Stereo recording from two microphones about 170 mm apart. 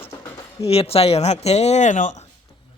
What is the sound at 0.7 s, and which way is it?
Speech, 35° left (ahead or behind).